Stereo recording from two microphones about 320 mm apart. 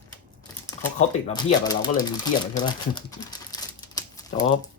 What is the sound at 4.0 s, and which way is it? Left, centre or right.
Typewriter, centre.